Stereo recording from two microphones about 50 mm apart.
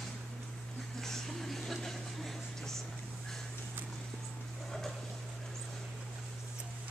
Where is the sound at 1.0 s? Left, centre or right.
Centre.